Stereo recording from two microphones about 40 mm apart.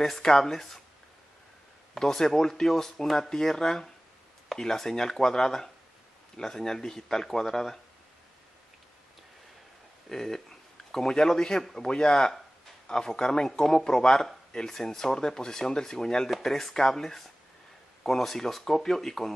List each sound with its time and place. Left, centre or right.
0.0 s speech: centre
2.0 s speech: centre
10.0 s speech: centre
14.5 s speech: centre
16.3 s speech: centre